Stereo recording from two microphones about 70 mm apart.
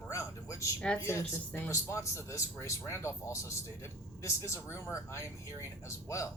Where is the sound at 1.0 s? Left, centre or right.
Left.